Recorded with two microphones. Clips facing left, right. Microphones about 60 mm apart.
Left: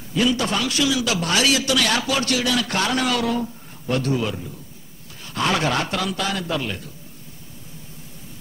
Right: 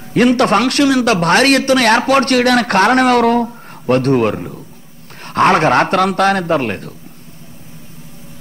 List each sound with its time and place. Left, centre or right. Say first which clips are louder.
0.1 s a man's voice: right 10 dB; right